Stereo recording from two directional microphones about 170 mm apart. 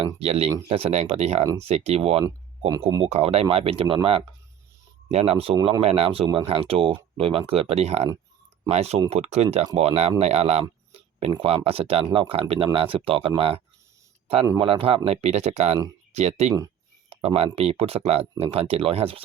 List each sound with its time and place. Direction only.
0.0 s speech: 35° right (ahead or behind)
14.6 s speech: 30° right (ahead or behind)